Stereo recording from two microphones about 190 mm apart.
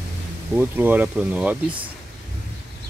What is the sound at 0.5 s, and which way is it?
Speech, 10° right (ahead or behind).